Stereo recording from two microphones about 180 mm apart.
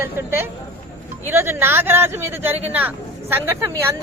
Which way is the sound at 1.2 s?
10° right (ahead or behind).